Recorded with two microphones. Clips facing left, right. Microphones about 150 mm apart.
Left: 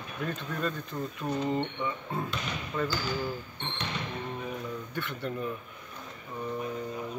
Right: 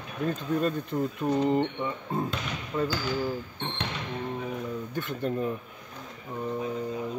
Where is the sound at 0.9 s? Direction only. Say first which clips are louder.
Right 7 dB; 10° right (ahead or behind).